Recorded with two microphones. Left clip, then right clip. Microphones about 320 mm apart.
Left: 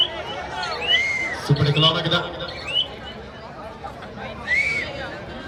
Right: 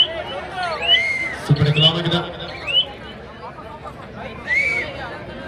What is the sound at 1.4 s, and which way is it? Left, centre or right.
A man's voice, left.